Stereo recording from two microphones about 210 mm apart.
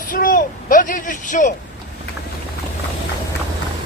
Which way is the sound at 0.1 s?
40° left (ahead or behind).